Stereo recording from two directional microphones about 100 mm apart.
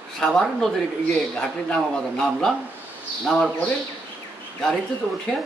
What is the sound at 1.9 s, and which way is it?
Speech, 5° left (ahead or behind).